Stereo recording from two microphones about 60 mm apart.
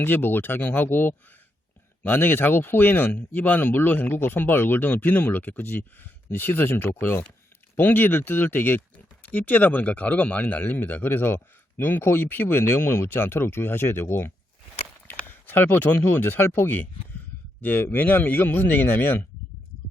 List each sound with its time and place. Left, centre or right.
0.0 s speech: left
15.3 s a sound: left
16.1 s speech: left